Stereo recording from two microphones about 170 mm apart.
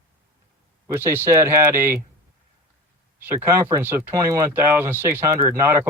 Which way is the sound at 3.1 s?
15° right (ahead or behind).